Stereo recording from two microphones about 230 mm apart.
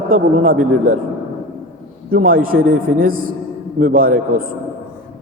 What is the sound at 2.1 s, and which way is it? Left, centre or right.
A man's voice, right.